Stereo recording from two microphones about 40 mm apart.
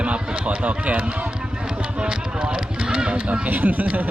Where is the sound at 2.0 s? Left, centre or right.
Right.